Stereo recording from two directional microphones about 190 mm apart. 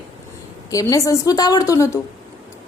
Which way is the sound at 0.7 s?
15° left (ahead or behind).